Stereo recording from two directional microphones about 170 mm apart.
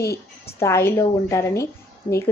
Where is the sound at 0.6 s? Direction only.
15° left (ahead or behind).